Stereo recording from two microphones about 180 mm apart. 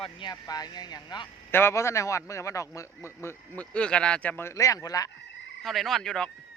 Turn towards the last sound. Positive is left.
turn(degrees=5)  # may be behind; listen again after turning